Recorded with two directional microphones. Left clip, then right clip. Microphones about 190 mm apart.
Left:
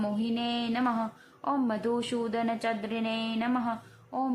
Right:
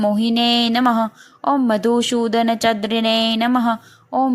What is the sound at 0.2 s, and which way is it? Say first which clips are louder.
Speech: right 15 dB; 35° right (ahead or behind).